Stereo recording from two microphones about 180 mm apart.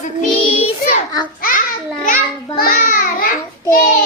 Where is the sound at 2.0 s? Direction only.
50° left (ahead or behind).